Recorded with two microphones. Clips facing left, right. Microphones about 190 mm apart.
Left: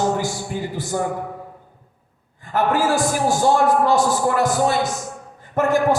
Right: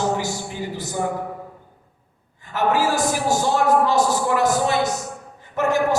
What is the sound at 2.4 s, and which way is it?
A man's voice, 50° left (ahead or behind).